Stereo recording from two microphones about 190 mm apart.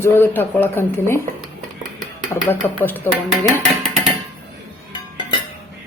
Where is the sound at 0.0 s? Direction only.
10° left (ahead or behind).